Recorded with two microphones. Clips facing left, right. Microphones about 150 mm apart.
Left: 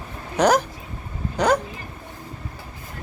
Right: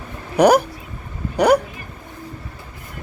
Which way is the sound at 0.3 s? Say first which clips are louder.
Right 5 dB; 10° right (ahead or behind).